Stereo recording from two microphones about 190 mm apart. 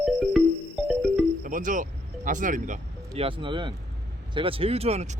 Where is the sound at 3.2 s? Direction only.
25° right (ahead or behind).